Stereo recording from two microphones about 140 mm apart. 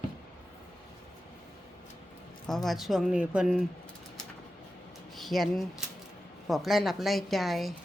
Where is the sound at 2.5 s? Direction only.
Centre (ahead or behind).